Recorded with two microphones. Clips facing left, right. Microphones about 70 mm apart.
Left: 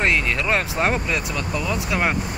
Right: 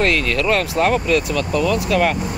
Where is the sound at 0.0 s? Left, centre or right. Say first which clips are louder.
Right 3 dB; left.